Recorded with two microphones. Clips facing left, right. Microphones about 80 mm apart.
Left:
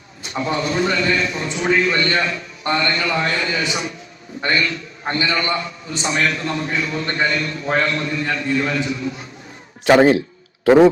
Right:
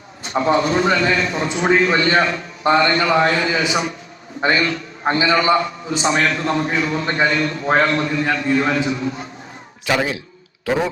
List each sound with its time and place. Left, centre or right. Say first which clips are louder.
0.2 s a man's voice: right 5 dB; right
9.8 s a man's voice: left 8 dB; left